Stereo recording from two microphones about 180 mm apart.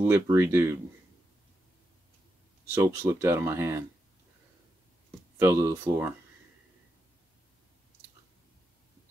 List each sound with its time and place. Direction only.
0.0 s speech: 15° right (ahead or behind)
2.6 s speech: 15° right (ahead or behind)
5.4 s speech: 15° right (ahead or behind)